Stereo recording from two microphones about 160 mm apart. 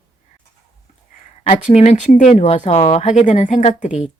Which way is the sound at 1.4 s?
45° left (ahead or behind).